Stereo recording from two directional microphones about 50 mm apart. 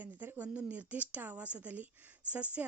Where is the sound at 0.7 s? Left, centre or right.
Right.